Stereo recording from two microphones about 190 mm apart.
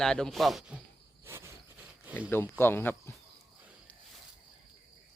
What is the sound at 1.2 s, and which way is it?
Cricket, 15° right (ahead or behind).